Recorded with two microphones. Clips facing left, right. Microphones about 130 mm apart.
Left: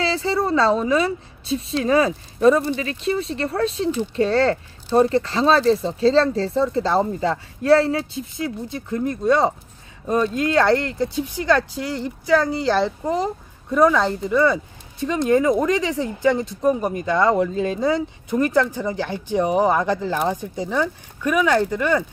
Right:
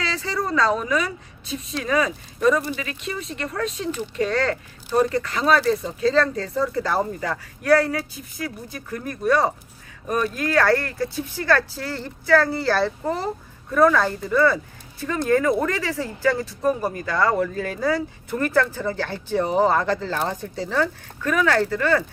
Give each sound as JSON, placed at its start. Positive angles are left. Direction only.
{"t": 0.0, "sound": "a woman's voice", "side_deg": 30}